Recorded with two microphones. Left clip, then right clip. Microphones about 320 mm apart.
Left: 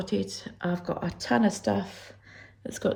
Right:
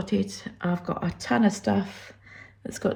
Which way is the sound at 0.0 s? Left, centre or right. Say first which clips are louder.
Right 1 dB; centre.